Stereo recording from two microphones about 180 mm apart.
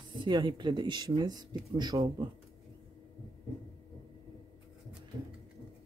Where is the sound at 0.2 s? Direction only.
25° right (ahead or behind).